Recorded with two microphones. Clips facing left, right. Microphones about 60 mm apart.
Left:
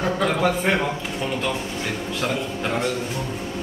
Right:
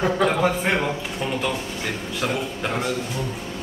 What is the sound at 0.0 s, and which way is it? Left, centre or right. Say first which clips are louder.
A man's voice: right 1 dB; centre.